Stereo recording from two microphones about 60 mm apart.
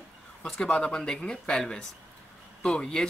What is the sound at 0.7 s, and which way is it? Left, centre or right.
Speech, centre.